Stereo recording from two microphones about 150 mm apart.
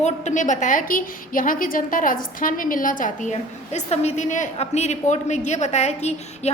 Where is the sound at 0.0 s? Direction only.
55° left (ahead or behind).